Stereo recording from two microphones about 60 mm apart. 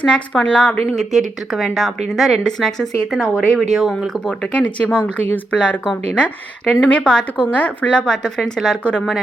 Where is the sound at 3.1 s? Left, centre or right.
Centre.